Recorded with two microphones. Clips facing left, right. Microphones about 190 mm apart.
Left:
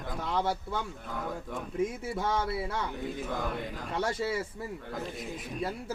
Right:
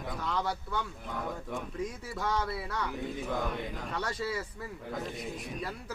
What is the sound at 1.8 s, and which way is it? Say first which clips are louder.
Speech: left 9 dB; 25° left (ahead or behind).